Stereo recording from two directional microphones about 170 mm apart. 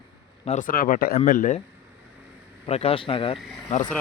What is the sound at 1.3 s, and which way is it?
Speech, 50° left (ahead or behind).